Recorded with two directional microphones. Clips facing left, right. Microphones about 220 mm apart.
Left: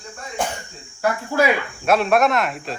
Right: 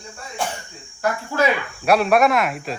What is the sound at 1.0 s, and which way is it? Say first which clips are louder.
Speech: left 1 dB; 10° left (ahead or behind).